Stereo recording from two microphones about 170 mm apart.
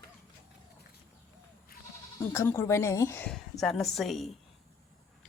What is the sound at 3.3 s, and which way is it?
Speech, centre (ahead or behind).